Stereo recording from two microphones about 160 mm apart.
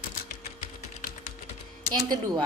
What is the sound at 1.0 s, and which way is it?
Typing, 55° left (ahead or behind).